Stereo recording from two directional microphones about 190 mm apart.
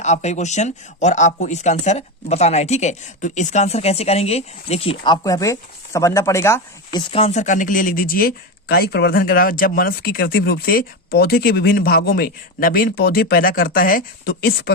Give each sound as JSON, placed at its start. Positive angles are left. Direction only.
{"t": 0.0, "sound": "speech", "side_deg": 35}
{"t": 7.1, "sound": "speech", "side_deg": 35}